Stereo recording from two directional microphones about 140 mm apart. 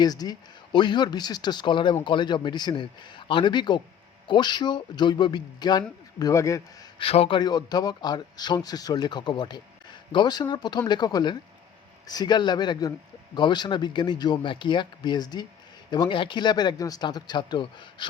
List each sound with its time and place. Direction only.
0.0 s a man's voice: 30° left (ahead or behind)
7.0 s speech: 40° left (ahead or behind)